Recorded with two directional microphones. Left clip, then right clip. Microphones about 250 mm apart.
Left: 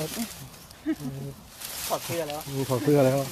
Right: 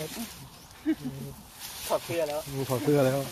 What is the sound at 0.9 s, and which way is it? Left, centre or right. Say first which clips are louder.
Speech: right 1 dB; right.